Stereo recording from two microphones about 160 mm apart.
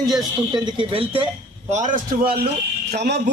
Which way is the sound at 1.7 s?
50° right (ahead or behind).